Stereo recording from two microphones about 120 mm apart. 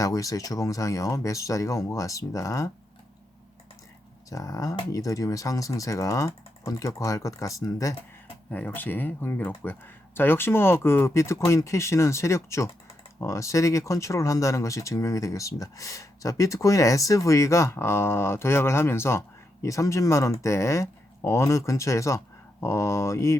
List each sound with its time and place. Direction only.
0.0 s speech: 30° left (ahead or behind)
4.3 s speech: 30° left (ahead or behind)
8.4 s speech: 10° left (ahead or behind)